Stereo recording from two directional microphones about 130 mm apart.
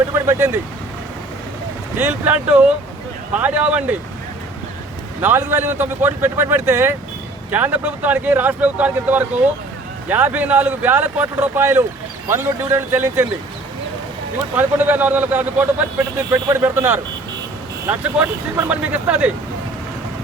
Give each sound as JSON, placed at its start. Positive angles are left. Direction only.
{"t": 0.3, "sound": "speech", "side_deg": -20}
{"t": 2.0, "sound": "speech", "side_deg": -15}
{"t": 5.2, "sound": "speech", "side_deg": -15}
{"t": 14.5, "sound": "speech", "side_deg": -15}